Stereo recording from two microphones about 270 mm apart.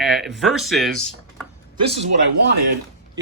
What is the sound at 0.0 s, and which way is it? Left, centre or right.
Speech, centre.